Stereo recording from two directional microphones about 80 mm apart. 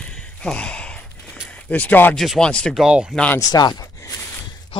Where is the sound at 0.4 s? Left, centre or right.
Centre.